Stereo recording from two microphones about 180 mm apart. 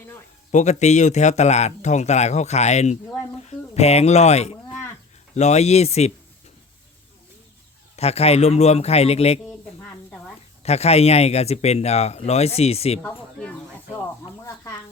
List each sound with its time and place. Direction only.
0.5 s speech: 40° left (ahead or behind)
7.9 s speech: 35° left (ahead or behind)
10.6 s speech: 35° left (ahead or behind)
13.0 s speech: 10° left (ahead or behind)